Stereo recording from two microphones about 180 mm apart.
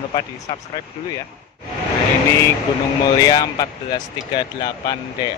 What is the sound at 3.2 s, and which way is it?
Speech, 20° left (ahead or behind).